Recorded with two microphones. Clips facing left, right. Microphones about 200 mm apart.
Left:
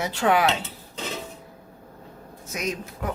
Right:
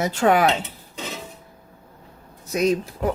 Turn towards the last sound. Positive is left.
turn(degrees=-30)  # may be behind; listen again after turning